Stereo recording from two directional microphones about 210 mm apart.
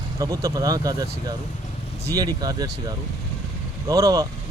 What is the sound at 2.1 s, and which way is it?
Speech, 15° right (ahead or behind).